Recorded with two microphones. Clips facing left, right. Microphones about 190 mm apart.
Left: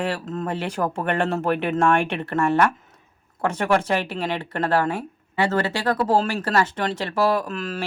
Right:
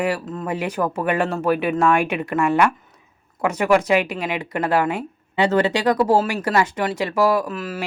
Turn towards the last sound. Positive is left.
turn(degrees=-5)  # may be behind; listen again after turning